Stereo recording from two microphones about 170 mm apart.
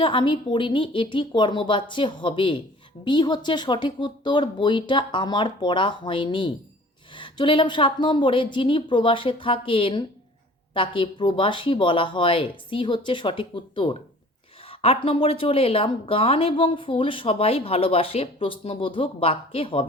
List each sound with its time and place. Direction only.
0.0 s speech: 30° left (ahead or behind)